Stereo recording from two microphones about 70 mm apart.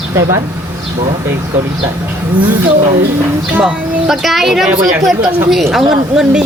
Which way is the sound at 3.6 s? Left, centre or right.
Centre.